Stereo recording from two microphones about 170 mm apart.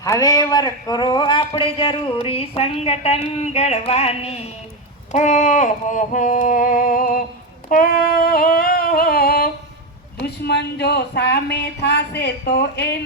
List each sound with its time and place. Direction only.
0.0 s speech: 20° left (ahead or behind); by 4.4 s 35° left (ahead or behind)
5.1 s music: 45° left (ahead or behind)
7.7 s a sound: 55° left (ahead or behind)
10.2 s speech: 75° left (ahead or behind)